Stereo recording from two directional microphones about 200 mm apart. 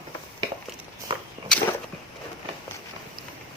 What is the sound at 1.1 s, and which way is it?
Walk, 25° right (ahead or behind).